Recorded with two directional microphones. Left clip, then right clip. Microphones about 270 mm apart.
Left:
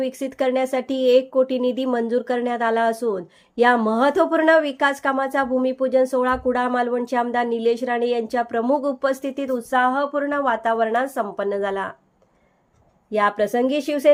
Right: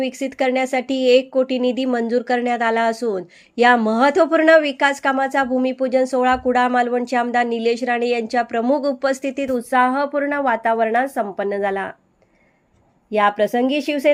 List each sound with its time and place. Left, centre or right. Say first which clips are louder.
0.0 s speech: right 2 dB; centre
13.1 s speech: right 3 dB; centre